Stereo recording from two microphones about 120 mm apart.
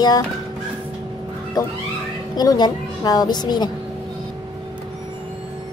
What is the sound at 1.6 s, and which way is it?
Speech, 35° left (ahead or behind).